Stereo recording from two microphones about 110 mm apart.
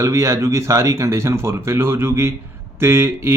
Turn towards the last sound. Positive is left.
turn(degrees=-20)  # may be behind; listen again after turning